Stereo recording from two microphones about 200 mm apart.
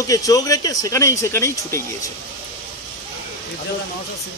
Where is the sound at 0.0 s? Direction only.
15° left (ahead or behind).